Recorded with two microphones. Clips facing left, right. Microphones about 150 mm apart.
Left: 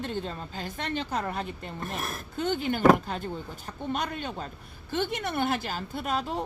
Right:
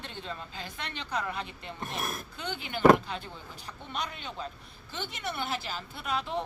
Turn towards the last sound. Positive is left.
turn(degrees=40)  # may be behind; listen again after turning